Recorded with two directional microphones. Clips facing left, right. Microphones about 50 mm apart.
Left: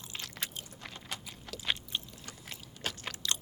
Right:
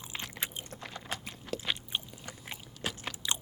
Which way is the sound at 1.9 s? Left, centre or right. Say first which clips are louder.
Right 2 dB; right.